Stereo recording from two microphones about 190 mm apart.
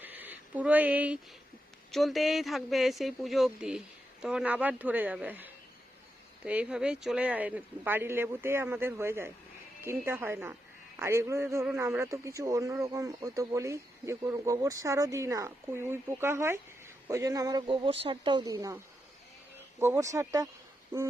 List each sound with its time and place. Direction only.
0.0 s a sound: 10° right (ahead or behind)
1.9 s a man's voice: centre (ahead or behind); by 18.8 s 20° right (ahead or behind)
19.8 s speech: 15° right (ahead or behind)